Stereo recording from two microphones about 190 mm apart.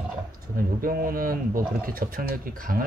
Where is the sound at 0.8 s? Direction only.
50° right (ahead or behind).